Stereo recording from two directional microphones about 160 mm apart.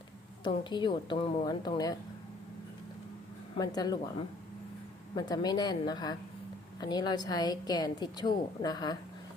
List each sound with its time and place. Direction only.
0.4 s a woman's voice: 30° left (ahead or behind)
3.6 s a woman's voice: 25° left (ahead or behind)
5.1 s a woman's voice: 25° left (ahead or behind)